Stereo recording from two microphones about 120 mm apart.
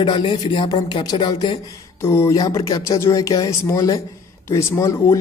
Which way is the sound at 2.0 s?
20° left (ahead or behind).